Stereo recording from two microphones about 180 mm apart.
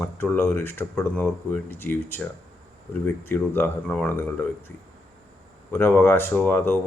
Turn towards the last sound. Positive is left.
turn(degrees=10)  # may be behind; listen again after turning